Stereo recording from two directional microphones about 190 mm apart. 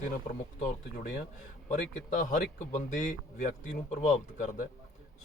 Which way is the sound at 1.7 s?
40° left (ahead or behind).